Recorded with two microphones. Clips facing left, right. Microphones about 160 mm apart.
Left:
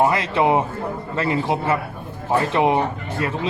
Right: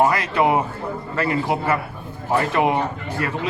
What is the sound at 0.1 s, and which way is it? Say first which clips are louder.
Speech: left 1 dB; 25° left (ahead or behind).